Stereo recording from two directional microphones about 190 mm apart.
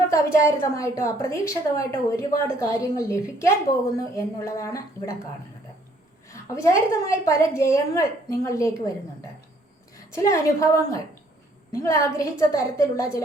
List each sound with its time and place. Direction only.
0.1 s a woman's voice: 15° left (ahead or behind)
6.2 s a woman's voice: 15° left (ahead or behind)
10.2 s a woman's voice: 15° left (ahead or behind)